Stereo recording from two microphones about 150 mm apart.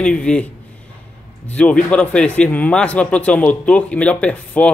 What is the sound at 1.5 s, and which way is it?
Speech, 10° left (ahead or behind).